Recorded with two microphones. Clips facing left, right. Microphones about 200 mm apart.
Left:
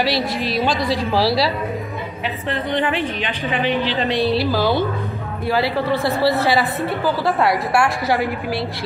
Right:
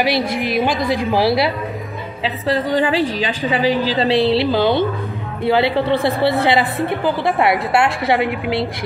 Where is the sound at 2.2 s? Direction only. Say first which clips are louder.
Right 6 dB; 30° right (ahead or behind).